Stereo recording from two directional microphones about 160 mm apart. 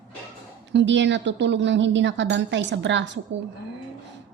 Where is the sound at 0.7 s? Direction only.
90° right.